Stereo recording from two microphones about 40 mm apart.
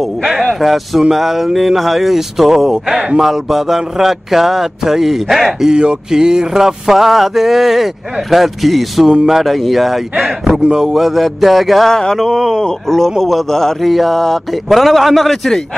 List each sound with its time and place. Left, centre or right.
0.2 s a sound: centre
0.6 s speech: centre
3.2 s a sound: centre
5.7 s a sound: right; by 9.0 s centre
9.0 s speech: centre
9.3 s speech: centre
10.6 s speech: centre
11.9 s a man's voice: centre
12.2 s speech: centre
12.5 s a man's voice: centre
13.8 s speech: centre